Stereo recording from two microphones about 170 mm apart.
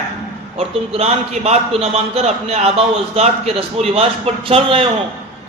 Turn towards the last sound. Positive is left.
turn(degrees=-30)  # may be behind; listen again after turning